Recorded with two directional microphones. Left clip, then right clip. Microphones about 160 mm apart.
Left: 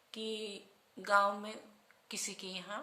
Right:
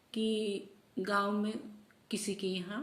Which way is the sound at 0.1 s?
25° left (ahead or behind).